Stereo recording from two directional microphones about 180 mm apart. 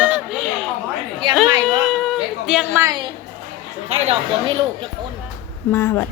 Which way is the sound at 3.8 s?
35° right (ahead or behind).